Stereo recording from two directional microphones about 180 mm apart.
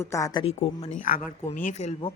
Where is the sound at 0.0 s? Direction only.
15° left (ahead or behind).